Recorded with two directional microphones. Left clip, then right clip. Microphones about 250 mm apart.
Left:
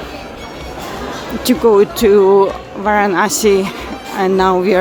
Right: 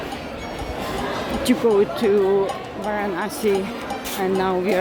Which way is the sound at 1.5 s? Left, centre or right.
Left.